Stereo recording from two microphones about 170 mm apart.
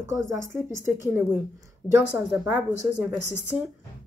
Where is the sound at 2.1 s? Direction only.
5° right (ahead or behind).